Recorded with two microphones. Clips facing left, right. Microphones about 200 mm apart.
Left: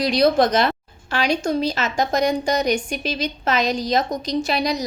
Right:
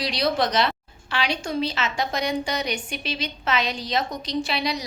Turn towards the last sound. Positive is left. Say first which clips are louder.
# left 4 dB
turn(degrees=45)  # may be behind; listen again after turning